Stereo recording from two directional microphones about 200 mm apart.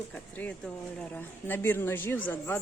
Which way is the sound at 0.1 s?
5° left (ahead or behind).